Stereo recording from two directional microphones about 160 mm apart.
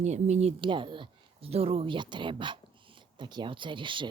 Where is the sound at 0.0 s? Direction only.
45° right (ahead or behind).